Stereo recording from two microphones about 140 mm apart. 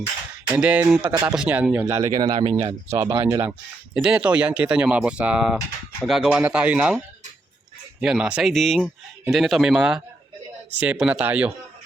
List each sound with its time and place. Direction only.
0.6 s speech: 10° right (ahead or behind)
1.0 s speech: 30° right (ahead or behind)
1.3 s speech: 10° right (ahead or behind); by 3.4 s 25° right (ahead or behind)
3.9 s speech: 5° right (ahead or behind)
8.0 s speech: 5° right (ahead or behind)